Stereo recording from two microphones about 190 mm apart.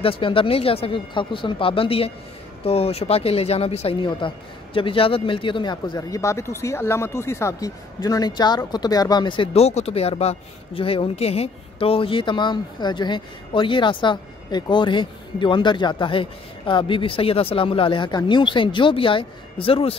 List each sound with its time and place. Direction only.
0.0 s speech: 30° left (ahead or behind)